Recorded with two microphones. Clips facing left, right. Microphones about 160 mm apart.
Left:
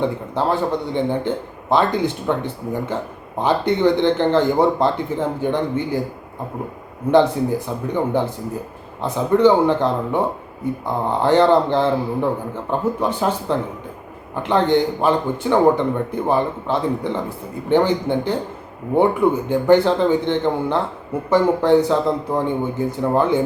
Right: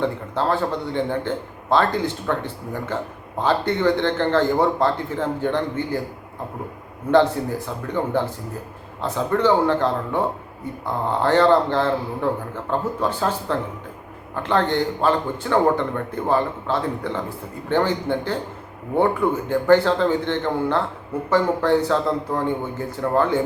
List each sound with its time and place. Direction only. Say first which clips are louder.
0.0 s speech: left 2 dB; 15° left (ahead or behind)
7.9 s speech: left 2 dB; 15° left (ahead or behind)